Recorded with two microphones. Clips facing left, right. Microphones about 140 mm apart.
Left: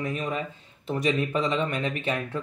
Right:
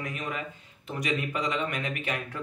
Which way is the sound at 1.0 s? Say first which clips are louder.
Left 4 dB; 30° left (ahead or behind).